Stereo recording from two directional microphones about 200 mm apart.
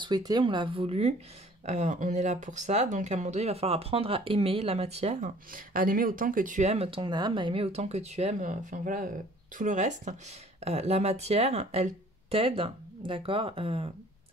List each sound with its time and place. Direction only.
0.0 s speech: 20° right (ahead or behind)